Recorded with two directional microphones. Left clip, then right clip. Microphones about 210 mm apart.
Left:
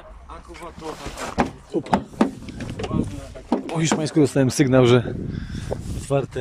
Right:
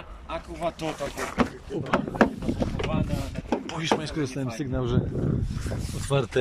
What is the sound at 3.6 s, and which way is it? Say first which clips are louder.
Speech: left 2 dB; 25° left (ahead or behind).